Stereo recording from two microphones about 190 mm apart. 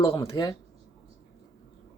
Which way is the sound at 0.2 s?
20° left (ahead or behind).